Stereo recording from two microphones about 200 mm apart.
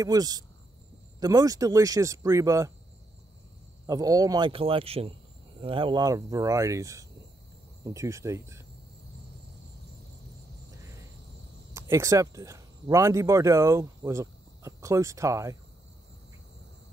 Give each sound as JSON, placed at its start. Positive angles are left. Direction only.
{"t": 0.0, "sound": "speech", "side_deg": -20}
{"t": 3.8, "sound": "speech", "side_deg": -15}
{"t": 11.7, "sound": "speech", "side_deg": -15}